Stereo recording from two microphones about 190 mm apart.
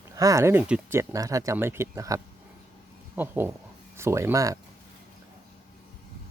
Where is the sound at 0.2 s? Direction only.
15° right (ahead or behind).